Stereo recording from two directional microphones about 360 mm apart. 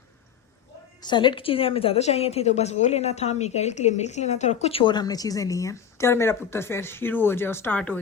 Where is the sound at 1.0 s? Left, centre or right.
Centre.